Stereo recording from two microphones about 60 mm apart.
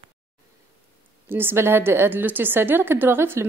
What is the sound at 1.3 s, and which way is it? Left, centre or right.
A woman's voice, right.